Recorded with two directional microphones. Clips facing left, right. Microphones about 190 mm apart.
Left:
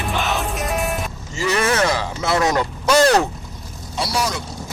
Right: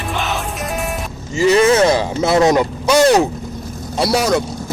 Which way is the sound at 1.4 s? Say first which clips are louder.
Right 8 dB; 20° right (ahead or behind).